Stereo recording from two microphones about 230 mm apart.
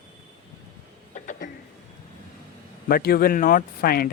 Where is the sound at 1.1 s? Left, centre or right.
Left.